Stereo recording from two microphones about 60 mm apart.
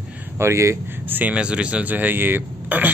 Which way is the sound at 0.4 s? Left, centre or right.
Right.